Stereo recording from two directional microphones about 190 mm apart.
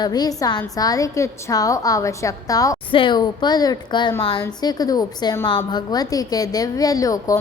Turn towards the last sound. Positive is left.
turn(degrees=20)  # may be behind; listen again after turning